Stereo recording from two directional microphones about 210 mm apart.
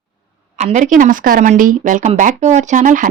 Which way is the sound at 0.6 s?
35° right (ahead or behind).